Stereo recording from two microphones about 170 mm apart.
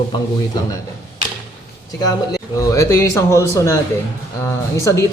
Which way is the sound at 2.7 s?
15° left (ahead or behind).